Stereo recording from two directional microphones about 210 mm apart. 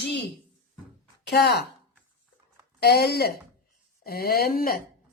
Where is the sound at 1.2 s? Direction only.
55° left (ahead or behind).